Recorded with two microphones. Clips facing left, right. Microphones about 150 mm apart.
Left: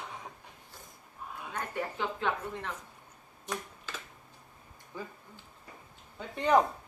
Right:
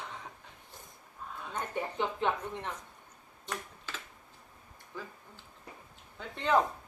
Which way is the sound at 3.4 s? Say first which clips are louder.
Left 2 dB; 10° left (ahead or behind).